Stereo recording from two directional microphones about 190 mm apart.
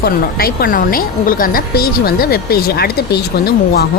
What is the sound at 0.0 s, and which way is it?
Speech, 55° left (ahead or behind).